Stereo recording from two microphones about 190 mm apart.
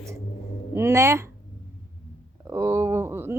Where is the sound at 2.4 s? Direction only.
15° right (ahead or behind).